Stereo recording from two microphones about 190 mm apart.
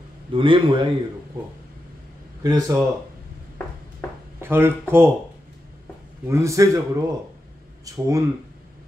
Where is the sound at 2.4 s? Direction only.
20° right (ahead or behind).